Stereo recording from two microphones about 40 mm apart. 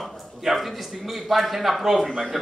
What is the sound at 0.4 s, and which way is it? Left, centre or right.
A man's voice, centre.